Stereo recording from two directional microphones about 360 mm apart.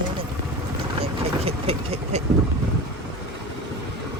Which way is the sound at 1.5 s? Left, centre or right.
Centre.